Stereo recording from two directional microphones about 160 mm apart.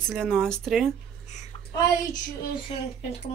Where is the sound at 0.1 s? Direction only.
5° left (ahead or behind).